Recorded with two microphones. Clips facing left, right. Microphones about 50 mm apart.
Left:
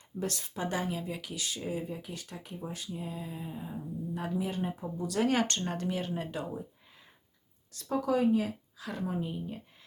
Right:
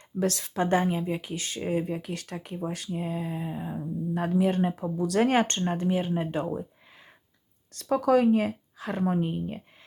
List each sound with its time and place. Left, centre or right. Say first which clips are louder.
0.2 s speech: right 8 dB; right
0.6 s speech: right 9 dB; right
4.8 s speech: right 7 dB; right
5.3 s speech: right 5 dB; right
6.4 s speech: right 7 dB; right
7.7 s speech: right 7 dB; right
9.1 s speech: right 7 dB; right